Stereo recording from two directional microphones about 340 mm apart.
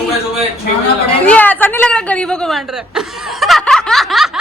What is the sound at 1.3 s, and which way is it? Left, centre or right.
Chuckle, centre.